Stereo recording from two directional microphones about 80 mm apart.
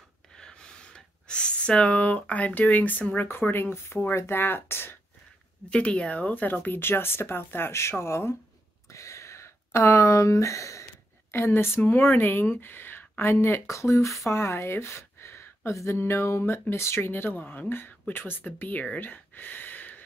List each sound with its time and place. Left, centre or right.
0.4 s gasp: centre
3.3 s speech: left
5.7 s speech: centre; by 8.4 s left
8.9 s a sound: left
11.3 s speech: left